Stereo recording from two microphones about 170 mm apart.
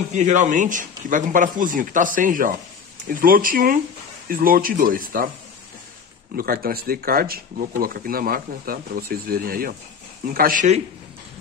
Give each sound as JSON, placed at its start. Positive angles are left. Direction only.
{"t": 0.1, "sound": "a man's voice", "side_deg": -45}
{"t": 6.3, "sound": "a man's voice", "side_deg": -60}